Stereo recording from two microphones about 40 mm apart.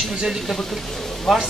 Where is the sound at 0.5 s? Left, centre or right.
Centre.